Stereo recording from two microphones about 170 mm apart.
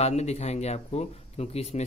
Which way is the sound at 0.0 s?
40° left (ahead or behind).